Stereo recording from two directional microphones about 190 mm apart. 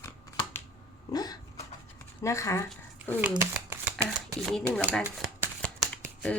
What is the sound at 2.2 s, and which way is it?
Speech, 15° left (ahead or behind).